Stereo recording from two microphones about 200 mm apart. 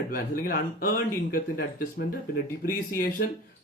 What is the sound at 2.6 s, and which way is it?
Speech, 45° left (ahead or behind).